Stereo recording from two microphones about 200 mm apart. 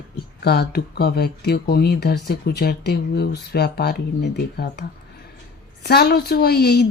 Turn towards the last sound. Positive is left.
turn(degrees=55)  # may be behind; listen again after turning